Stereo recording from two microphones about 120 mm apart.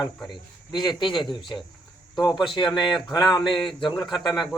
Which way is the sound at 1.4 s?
40° left (ahead or behind).